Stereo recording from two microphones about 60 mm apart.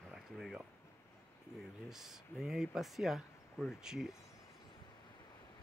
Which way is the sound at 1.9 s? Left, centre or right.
Centre.